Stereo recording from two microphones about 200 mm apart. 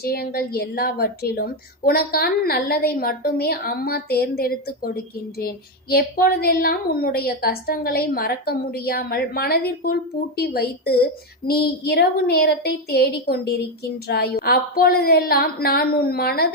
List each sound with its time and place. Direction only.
0.0 s speech: 50° left (ahead or behind)